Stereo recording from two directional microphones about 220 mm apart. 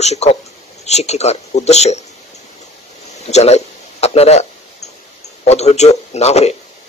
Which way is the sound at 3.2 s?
30° left (ahead or behind).